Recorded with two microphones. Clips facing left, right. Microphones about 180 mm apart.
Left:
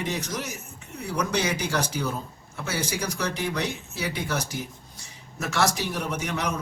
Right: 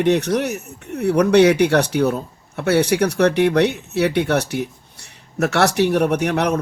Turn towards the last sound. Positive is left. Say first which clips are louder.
# right 10 dB
turn(degrees=-65)  # may be behind; listen again after turning